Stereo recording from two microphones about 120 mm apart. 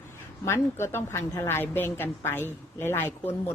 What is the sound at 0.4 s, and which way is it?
A woman's voice, 20° left (ahead or behind).